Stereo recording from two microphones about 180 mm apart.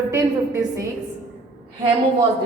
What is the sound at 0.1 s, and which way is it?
Speech, 15° right (ahead or behind).